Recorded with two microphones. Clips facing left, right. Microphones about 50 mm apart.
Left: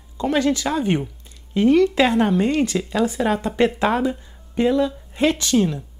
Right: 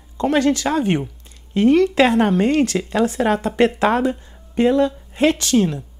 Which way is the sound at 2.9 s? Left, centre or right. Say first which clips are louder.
Right 2 dB; right.